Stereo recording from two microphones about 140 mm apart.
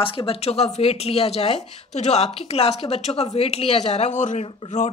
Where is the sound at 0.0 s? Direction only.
40° left (ahead or behind).